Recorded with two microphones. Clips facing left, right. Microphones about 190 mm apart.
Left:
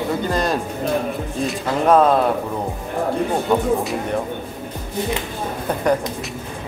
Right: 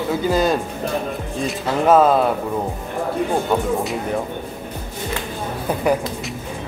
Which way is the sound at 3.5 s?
5° right (ahead or behind).